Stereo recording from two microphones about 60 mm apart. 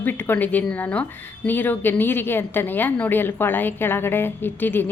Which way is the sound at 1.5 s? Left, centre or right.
Left.